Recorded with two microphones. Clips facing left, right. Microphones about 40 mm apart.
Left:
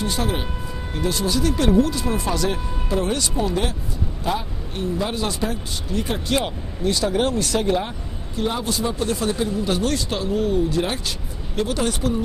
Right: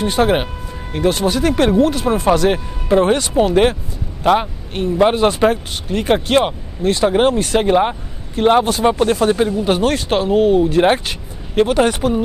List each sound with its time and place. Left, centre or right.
0.0 s speech: right
8.4 s speech: right